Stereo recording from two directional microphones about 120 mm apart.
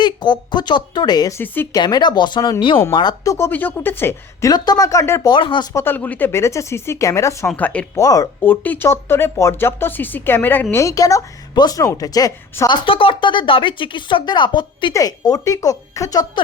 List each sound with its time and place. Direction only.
0.0 s speech: 40° left (ahead or behind)
3.3 s speech: 20° left (ahead or behind)
4.5 s speech: 35° left (ahead or behind)
5.3 s speech: 40° left (ahead or behind)
5.7 s speech: 20° left (ahead or behind)
7.4 s speech: 10° left (ahead or behind)
7.9 s speech: 30° left (ahead or behind)
8.4 s speech: 15° left (ahead or behind); by 16.4 s 30° left (ahead or behind)